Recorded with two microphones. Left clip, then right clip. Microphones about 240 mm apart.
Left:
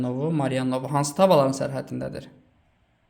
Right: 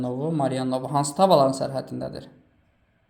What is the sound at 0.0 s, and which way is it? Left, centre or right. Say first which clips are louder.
Speech: right 1 dB; left.